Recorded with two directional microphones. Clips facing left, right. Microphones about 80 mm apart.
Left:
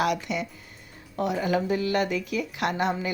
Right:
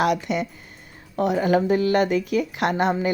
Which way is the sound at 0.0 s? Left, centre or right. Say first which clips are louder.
Right 4 dB; right.